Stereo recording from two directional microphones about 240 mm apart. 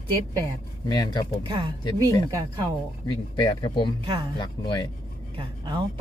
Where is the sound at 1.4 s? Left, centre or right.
Centre.